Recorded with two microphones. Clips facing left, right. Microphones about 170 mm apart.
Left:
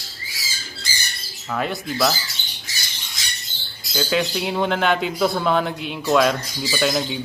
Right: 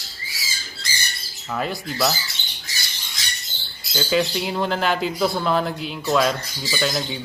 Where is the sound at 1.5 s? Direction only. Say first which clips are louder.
Left 2 dB; centre (ahead or behind).